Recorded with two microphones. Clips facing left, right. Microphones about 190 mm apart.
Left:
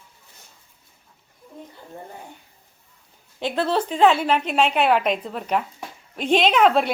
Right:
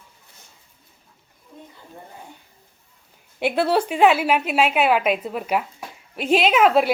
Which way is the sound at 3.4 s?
10° right (ahead or behind).